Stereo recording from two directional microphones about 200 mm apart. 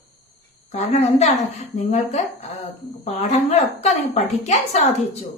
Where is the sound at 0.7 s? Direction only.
30° left (ahead or behind).